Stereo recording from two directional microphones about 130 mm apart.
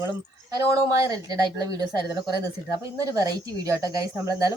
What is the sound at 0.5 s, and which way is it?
A woman's voice, 25° right (ahead or behind).